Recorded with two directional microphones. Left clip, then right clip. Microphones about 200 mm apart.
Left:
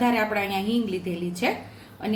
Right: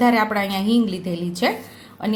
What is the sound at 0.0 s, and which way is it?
Speech, 40° right (ahead or behind).